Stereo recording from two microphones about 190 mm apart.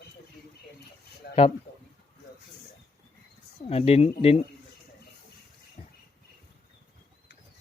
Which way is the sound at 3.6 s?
30° left (ahead or behind).